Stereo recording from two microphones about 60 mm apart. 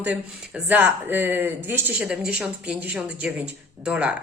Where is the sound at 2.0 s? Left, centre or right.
Centre.